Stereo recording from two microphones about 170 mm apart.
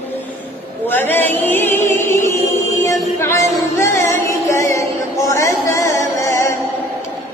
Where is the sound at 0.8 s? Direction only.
10° left (ahead or behind).